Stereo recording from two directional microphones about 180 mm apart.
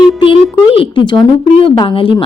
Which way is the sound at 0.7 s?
30° left (ahead or behind).